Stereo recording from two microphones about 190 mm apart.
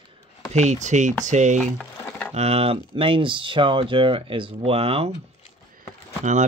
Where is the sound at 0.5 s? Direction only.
40° right (ahead or behind).